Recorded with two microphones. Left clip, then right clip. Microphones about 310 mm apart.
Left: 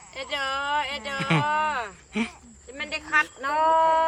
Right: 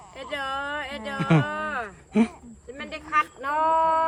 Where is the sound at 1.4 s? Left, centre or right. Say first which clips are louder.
Left 4 dB; left.